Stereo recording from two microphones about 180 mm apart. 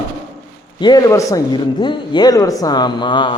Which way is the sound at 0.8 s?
20° left (ahead or behind).